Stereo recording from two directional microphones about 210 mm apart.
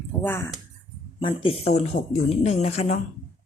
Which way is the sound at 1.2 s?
25° left (ahead or behind).